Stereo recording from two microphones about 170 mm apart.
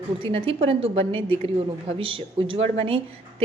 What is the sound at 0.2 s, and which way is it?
A woman's voice, 35° right (ahead or behind).